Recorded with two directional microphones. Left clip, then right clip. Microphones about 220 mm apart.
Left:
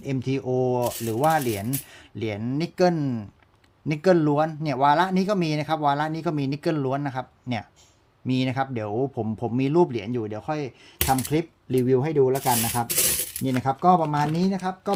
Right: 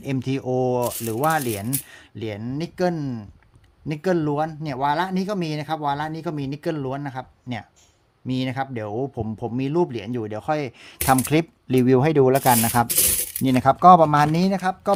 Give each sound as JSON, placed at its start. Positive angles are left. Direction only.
{"t": 0.0, "sound": "speech", "side_deg": -15}